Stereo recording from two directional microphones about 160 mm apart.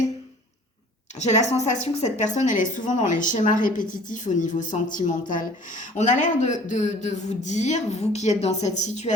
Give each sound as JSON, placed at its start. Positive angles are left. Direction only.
{"t": 1.2, "sound": "a woman's voice", "side_deg": 45}